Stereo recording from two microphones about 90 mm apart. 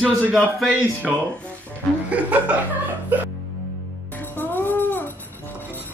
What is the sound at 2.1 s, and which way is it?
Speech, 15° right (ahead or behind).